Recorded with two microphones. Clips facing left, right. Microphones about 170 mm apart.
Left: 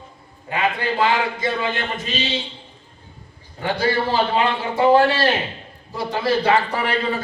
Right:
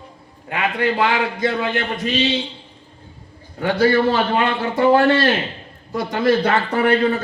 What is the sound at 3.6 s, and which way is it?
A man's voice, 65° right (ahead or behind).